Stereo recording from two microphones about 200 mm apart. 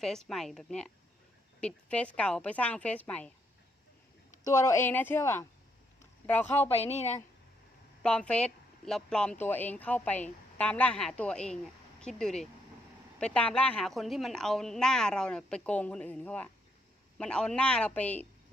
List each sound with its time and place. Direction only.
0.0 s a woman's voice: centre (ahead or behind)
4.4 s a woman's voice: 15° left (ahead or behind)
6.7 s a woman's voice: 30° left (ahead or behind)
8.0 s a woman's voice: 5° left (ahead or behind)